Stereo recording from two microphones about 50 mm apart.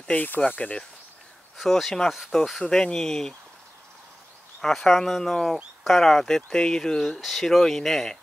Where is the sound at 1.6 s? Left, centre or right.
Centre.